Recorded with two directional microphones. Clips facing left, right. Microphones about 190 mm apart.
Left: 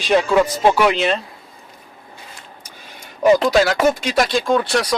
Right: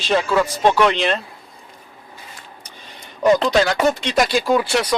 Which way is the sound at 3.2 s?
10° left (ahead or behind).